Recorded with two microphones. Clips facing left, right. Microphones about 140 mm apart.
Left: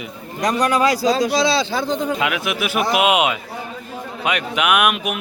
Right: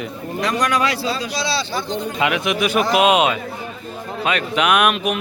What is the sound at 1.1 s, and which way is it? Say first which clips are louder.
Speech: left 7 dB; 85° left.